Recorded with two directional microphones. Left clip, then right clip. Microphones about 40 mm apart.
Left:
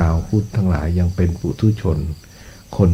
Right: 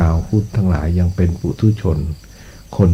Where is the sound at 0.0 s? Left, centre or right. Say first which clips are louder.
Right 1 dB; left.